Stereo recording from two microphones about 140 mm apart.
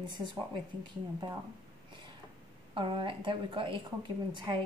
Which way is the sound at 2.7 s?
35° right (ahead or behind).